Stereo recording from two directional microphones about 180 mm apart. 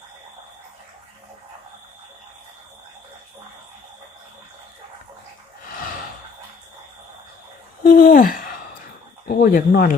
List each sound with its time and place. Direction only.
7.9 s gasp: 50° left (ahead or behind)
9.2 s speech: 50° left (ahead or behind)